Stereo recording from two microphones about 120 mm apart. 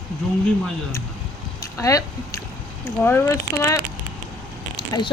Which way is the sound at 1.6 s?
30° left (ahead or behind).